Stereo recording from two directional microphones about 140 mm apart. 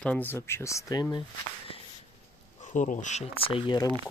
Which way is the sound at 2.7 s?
65° left (ahead or behind).